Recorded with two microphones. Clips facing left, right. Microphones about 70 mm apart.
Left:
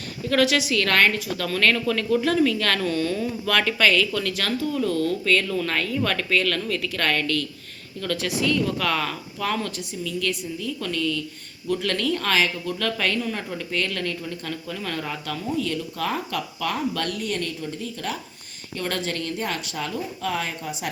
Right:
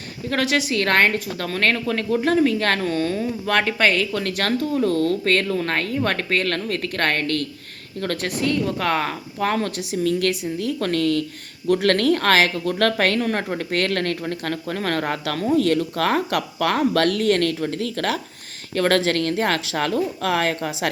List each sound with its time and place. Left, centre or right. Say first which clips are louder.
0.3 s speech: left 1 dB; right
8.5 s speech: right 2 dB; right
9.9 s a woman's voice: right 8 dB; right